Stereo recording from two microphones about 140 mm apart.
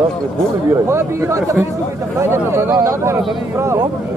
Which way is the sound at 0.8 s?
20° right (ahead or behind).